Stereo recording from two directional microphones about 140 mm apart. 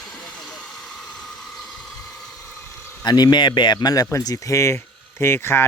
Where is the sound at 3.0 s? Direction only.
30° left (ahead or behind).